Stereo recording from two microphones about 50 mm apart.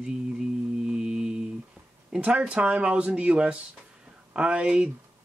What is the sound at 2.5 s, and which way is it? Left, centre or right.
Speech, right.